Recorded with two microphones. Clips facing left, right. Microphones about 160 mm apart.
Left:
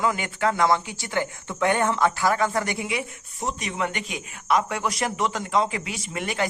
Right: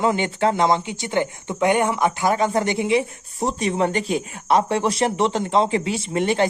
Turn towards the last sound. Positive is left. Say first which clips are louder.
# right 8 dB
turn(degrees=-30)  # may be behind; listen again after turning